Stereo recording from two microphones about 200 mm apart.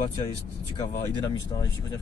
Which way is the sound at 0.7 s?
20° left (ahead or behind).